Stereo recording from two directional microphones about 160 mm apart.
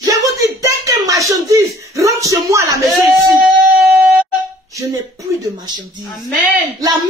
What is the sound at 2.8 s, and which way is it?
Speech, centre (ahead or behind).